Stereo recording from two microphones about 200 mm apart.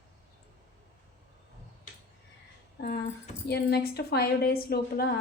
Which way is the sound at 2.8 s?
45° left (ahead or behind).